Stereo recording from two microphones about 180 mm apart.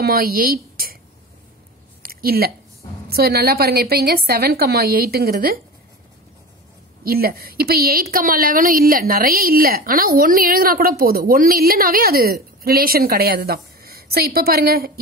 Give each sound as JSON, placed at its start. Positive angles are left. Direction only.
{"t": 0.0, "sound": "a woman's voice", "side_deg": -55}
{"t": 2.0, "sound": "a sound", "side_deg": -55}
{"t": 3.1, "sound": "a woman's voice", "side_deg": -60}
{"t": 7.0, "sound": "a woman's voice", "side_deg": -55}